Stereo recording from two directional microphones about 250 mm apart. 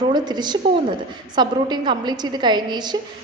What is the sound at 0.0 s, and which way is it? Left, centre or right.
A woman's voice, centre.